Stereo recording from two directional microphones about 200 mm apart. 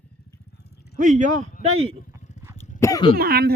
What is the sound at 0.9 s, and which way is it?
Speech, 40° right (ahead or behind).